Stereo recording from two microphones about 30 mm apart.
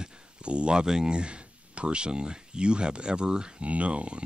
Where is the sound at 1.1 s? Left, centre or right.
Right.